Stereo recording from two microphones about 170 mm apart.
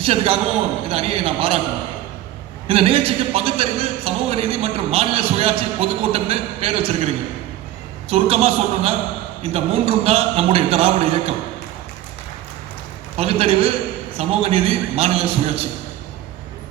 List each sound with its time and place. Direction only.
0.0 s a man's voice: 35° right (ahead or behind)
2.6 s a man's voice: 35° right (ahead or behind)
8.1 s a man's voice: 35° right (ahead or behind)
13.1 s a man's voice: 35° right (ahead or behind)